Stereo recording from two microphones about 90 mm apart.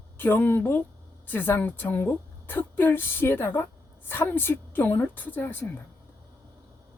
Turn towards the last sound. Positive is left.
turn(degrees=20)  # may be behind; listen again after turning